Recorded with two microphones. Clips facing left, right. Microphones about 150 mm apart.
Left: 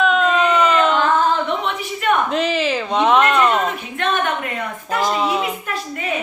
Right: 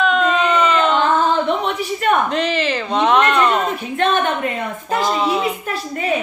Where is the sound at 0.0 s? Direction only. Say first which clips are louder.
Even; centre (ahead or behind).